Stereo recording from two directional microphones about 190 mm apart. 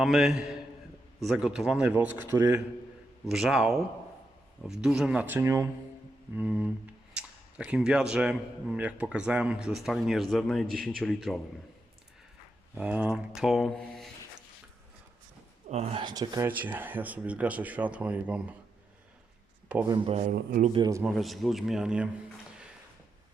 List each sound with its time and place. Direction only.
0.0 s speech: centre (ahead or behind)
3.2 s speech: centre (ahead or behind)
12.7 s speech: 10° right (ahead or behind)
15.7 s speech: 30° right (ahead or behind)
16.5 s speech: 10° right (ahead or behind)
19.8 s speech: 20° right (ahead or behind)
20.1 s speech: 40° right (ahead or behind)
20.7 s speech: 20° right (ahead or behind)
21.0 s speech: centre (ahead or behind)